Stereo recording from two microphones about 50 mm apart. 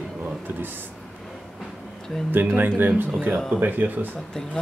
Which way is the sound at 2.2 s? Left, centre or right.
Right.